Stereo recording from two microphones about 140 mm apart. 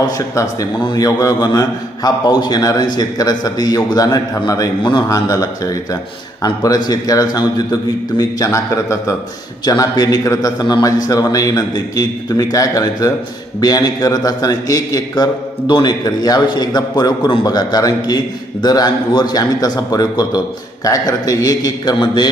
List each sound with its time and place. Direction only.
0.3 s a man's voice: 30° left (ahead or behind)